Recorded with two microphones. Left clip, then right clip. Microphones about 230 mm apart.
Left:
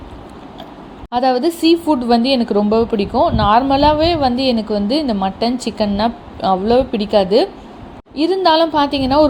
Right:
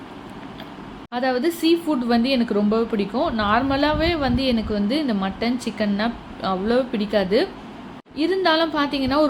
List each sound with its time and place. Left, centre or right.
1.1 s a woman's voice: centre